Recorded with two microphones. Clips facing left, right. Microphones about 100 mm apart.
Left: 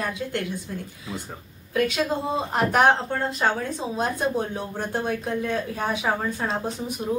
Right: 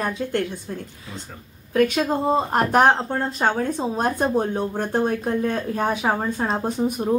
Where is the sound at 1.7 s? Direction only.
40° right (ahead or behind).